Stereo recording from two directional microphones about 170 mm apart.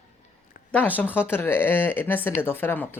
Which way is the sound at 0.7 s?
10° left (ahead or behind).